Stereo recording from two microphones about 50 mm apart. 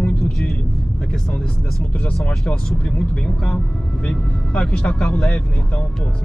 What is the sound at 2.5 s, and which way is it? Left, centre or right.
Speech, left.